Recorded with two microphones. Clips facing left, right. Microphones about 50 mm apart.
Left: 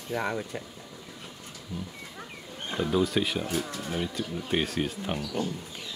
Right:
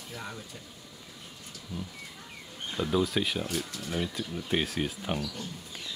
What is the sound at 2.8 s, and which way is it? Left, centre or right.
Speech, centre.